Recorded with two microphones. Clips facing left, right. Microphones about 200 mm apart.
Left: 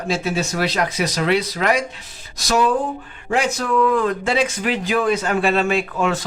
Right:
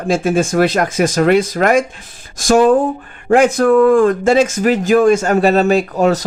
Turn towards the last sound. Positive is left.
turn(degrees=-40)  # may be behind; listen again after turning